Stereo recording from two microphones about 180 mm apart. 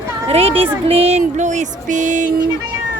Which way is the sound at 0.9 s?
35° right (ahead or behind).